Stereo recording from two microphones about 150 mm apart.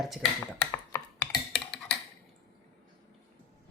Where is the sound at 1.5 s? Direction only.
5° left (ahead or behind).